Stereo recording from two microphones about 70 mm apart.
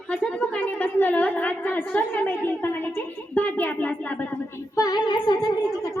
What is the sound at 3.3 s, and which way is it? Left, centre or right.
Speech, left.